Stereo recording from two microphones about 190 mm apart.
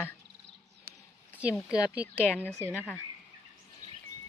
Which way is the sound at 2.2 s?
10° left (ahead or behind).